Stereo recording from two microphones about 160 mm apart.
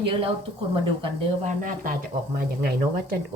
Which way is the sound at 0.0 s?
35° right (ahead or behind).